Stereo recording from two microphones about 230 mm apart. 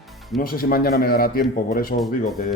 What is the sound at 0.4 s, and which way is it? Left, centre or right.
A man's voice, left.